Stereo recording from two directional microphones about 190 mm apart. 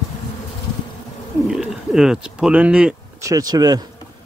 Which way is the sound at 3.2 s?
20° right (ahead or behind).